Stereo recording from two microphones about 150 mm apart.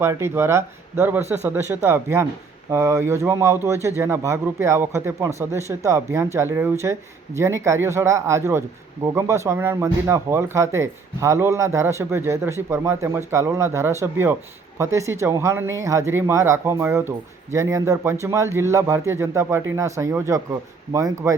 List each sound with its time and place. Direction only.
0.0 s speech: 15° right (ahead or behind)